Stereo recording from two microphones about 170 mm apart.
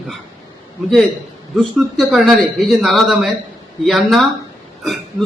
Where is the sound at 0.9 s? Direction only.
Centre (ahead or behind).